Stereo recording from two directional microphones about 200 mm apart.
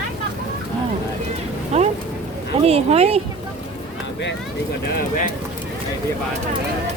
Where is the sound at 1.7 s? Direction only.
30° right (ahead or behind).